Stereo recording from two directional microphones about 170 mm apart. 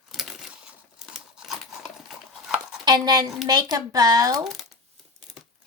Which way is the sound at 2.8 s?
25° right (ahead or behind).